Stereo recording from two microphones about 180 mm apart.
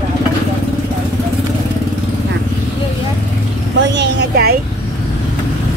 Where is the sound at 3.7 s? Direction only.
75° right (ahead or behind); by 4.6 s 60° right (ahead or behind).